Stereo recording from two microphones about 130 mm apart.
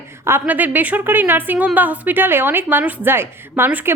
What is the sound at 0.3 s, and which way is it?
A woman's voice, 15° right (ahead or behind).